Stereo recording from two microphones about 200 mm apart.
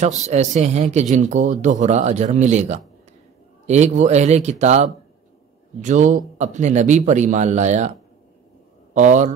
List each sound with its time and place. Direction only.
0.2 s a man's voice: 35° right (ahead or behind)
8.9 s a man's voice: 35° right (ahead or behind)